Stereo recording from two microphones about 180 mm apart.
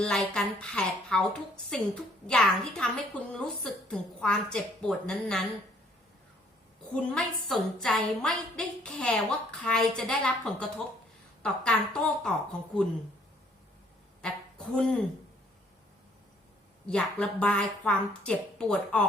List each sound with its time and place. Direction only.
0.0 s a woman's voice: 5° left (ahead or behind)
6.9 s a woman's voice: 5° left (ahead or behind)
14.2 s a sound: 5° left (ahead or behind)
16.9 s a woman's voice: 5° left (ahead or behind)